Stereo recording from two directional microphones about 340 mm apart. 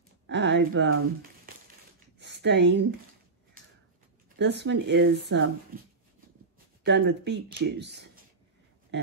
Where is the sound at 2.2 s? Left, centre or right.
Right.